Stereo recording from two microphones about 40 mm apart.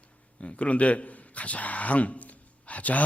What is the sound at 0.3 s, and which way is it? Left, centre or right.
A man's voice, left.